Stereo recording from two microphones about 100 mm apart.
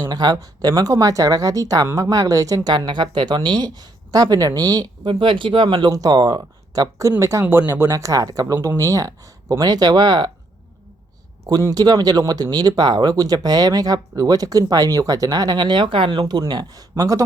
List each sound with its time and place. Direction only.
0.1 s speech: 45° right (ahead or behind)
7.2 s speech: 30° right (ahead or behind)
7.4 s speech: 15° right (ahead or behind)
7.7 s speech: 30° right (ahead or behind); by 10.3 s 45° right (ahead or behind)
11.4 s speech: 40° right (ahead or behind); by 16.2 s 60° right (ahead or behind)
16.2 s speech: 40° right (ahead or behind)
16.9 s speech: 30° right (ahead or behind)